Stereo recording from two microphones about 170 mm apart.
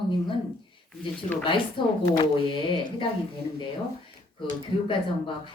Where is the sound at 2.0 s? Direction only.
20° left (ahead or behind).